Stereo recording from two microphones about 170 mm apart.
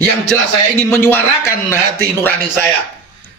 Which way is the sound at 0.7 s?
15° left (ahead or behind).